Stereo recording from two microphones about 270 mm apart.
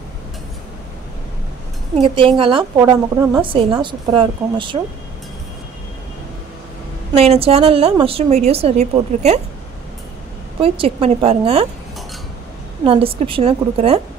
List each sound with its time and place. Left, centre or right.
2.0 s a woman's voice: centre
7.2 s a woman's voice: right
10.6 s a woman's voice: centre
12.8 s a woman's voice: centre